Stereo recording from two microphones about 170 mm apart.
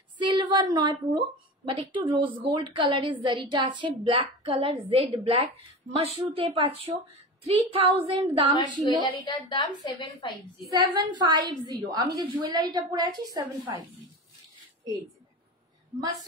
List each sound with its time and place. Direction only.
0.2 s a sound: 25° right (ahead or behind)
1.7 s a woman's voice: 30° right (ahead or behind)
9.0 s a woman's voice: 25° left (ahead or behind)
10.7 s a woman's voice: 25° right (ahead or behind)